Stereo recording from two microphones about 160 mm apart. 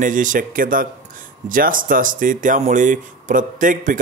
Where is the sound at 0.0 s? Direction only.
55° right (ahead or behind).